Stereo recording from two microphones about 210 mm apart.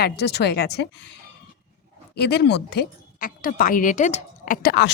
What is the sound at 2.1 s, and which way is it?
A woman's voice, 50° left (ahead or behind).